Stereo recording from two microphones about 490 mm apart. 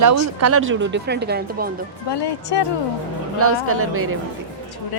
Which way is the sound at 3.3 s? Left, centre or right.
Right.